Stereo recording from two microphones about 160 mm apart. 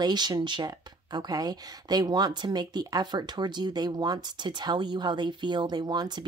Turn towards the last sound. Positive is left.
turn(degrees=-25)  # may be behind; listen again after turning